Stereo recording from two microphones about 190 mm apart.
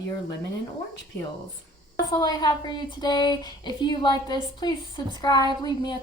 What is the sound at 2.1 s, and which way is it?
A woman's voice, 20° left (ahead or behind).